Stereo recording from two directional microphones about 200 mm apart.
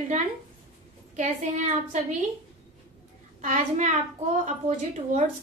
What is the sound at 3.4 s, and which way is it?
A woman's voice, 40° right (ahead or behind).